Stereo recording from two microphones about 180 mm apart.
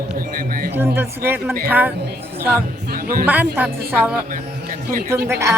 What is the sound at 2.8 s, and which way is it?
Speech, 55° right (ahead or behind).